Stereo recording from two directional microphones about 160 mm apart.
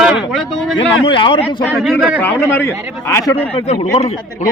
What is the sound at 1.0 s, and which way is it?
Speech, 30° left (ahead or behind).